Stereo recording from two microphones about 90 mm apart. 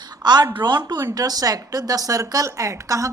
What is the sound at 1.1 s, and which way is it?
A woman's voice, 45° right (ahead or behind).